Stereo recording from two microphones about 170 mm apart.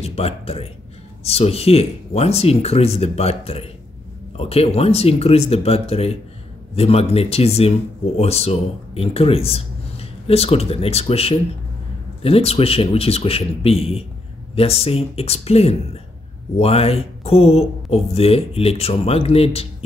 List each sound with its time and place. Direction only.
0.0 s speech: 35° left (ahead or behind)